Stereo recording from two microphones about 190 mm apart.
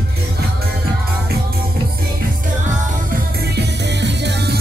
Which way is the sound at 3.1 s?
60° right (ahead or behind).